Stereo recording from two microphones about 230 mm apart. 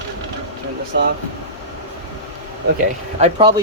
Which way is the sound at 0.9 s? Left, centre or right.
Right.